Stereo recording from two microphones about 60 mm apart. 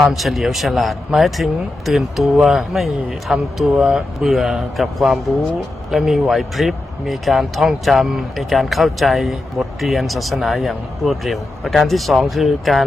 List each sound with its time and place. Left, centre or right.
0.1 s a man's voice: centre